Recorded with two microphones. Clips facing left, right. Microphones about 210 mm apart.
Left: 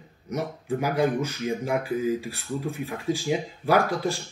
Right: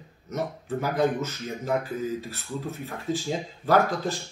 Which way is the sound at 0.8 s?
10° left (ahead or behind).